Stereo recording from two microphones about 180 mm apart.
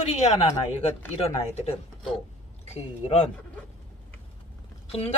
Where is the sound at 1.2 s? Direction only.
35° left (ahead or behind).